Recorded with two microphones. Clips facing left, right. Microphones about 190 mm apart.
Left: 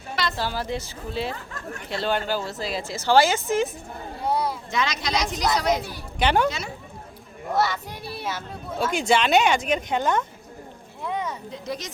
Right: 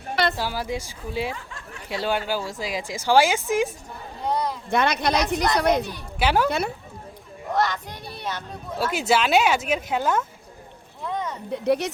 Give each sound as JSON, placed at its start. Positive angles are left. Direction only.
{"t": 0.3, "sound": "a woman's voice", "side_deg": -10}
{"t": 4.2, "sound": "a sound", "side_deg": 10}
{"t": 4.7, "sound": "a woman's voice", "side_deg": -60}
{"t": 6.1, "sound": "speech", "side_deg": -5}
{"t": 7.5, "sound": "a child's voice", "side_deg": 5}
{"t": 8.8, "sound": "speech", "side_deg": -5}
{"t": 11.0, "sound": "a sound", "side_deg": 10}
{"t": 11.5, "sound": "a woman's voice", "side_deg": -65}